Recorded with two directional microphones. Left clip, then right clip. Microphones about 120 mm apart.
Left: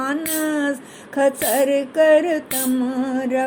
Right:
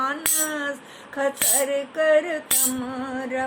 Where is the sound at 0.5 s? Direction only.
40° left (ahead or behind).